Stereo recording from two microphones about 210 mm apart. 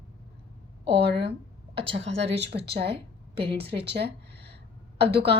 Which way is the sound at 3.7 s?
25° right (ahead or behind).